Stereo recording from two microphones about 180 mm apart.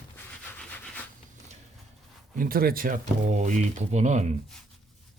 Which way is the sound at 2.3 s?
50° right (ahead or behind).